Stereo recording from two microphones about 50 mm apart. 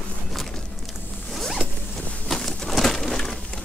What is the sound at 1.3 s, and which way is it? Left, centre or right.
Zipper, centre.